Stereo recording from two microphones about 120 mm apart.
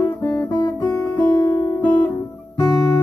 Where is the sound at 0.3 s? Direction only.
5° left (ahead or behind).